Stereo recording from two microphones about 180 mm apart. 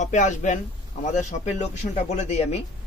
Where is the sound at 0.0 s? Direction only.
40° left (ahead or behind).